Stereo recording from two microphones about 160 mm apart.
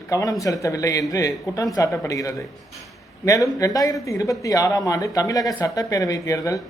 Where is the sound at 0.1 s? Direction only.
20° left (ahead or behind).